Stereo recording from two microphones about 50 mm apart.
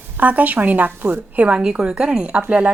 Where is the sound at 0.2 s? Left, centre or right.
Right.